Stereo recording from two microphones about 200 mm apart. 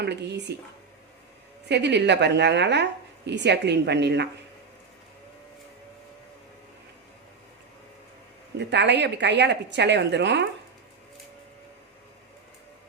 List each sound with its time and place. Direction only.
0.0 s a woman's voice: 55° right (ahead or behind)
1.6 s a woman's voice: 60° right (ahead or behind)
8.5 s a woman's voice: 60° right (ahead or behind)